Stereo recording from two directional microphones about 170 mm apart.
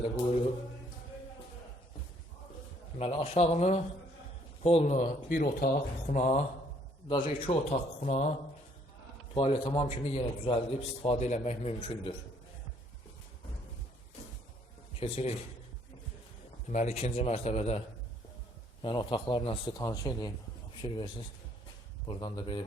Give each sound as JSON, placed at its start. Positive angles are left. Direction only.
{"t": 3.0, "sound": "a man's voice", "side_deg": 35}
{"t": 9.3, "sound": "a man's voice", "side_deg": 30}
{"t": 15.0, "sound": "a man's voice", "side_deg": 35}
{"t": 16.6, "sound": "a man's voice", "side_deg": 40}